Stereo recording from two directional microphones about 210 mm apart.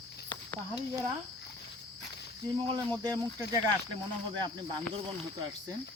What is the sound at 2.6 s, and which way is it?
Speech, 20° right (ahead or behind).